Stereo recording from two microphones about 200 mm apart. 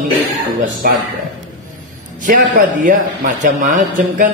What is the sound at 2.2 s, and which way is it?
Speech, 40° right (ahead or behind).